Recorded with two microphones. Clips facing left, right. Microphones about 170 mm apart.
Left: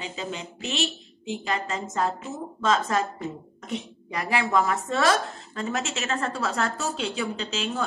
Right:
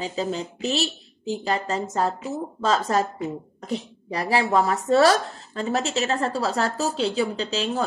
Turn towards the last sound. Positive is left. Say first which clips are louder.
# right 4 dB
turn(degrees=-35)  # may be behind; listen again after turning